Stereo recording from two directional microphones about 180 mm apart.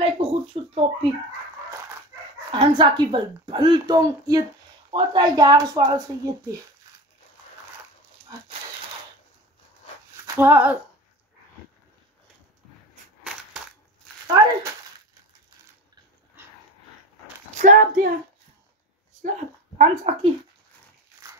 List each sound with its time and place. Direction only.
0.0 s speech: 30° right (ahead or behind)
2.5 s a woman's voice: 25° right (ahead or behind)
10.2 s speech: 10° right (ahead or behind)
17.6 s speech: 45° right (ahead or behind)
19.2 s speech: 40° right (ahead or behind)